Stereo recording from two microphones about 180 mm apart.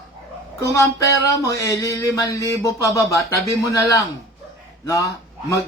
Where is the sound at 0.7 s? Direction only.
15° left (ahead or behind).